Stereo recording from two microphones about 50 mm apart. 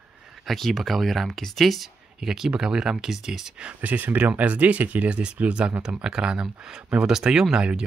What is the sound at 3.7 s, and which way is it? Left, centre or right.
Speech, right.